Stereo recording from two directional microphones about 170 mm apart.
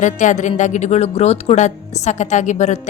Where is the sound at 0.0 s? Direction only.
45° left (ahead or behind).